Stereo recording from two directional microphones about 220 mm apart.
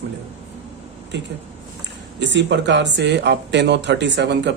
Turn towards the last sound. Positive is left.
turn(degrees=-55)  # may be behind; listen again after turning